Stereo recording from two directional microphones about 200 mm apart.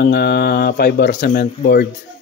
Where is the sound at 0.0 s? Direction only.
55° left (ahead or behind).